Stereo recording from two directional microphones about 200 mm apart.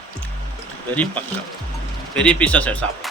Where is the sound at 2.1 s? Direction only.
5° left (ahead or behind).